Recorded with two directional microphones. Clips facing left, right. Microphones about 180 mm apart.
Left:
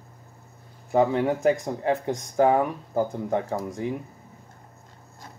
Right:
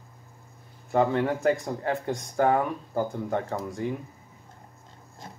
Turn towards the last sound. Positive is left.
turn(degrees=20)  # may be behind; listen again after turning